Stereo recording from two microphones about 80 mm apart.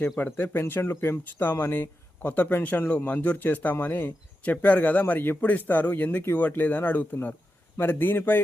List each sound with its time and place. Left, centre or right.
0.2 s speech: left